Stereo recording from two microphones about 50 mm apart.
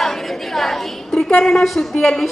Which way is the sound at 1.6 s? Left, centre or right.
Centre.